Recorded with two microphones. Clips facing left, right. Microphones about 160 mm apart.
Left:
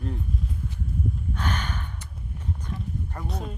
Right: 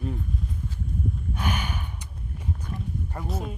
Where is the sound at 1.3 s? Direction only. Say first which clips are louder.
Right 1 dB; 10° right (ahead or behind).